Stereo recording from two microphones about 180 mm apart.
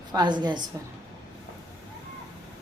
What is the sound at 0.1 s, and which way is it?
Speech, 25° right (ahead or behind).